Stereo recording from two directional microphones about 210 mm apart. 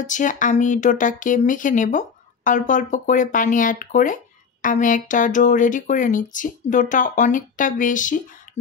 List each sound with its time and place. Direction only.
0.0 s speech: 35° left (ahead or behind)